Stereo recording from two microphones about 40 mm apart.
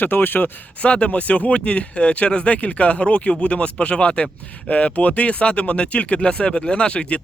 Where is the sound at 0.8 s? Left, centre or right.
Left.